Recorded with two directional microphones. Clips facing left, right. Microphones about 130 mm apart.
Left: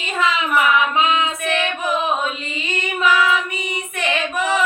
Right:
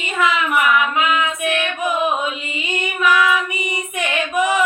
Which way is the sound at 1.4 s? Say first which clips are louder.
Right 1 dB; 15° right (ahead or behind).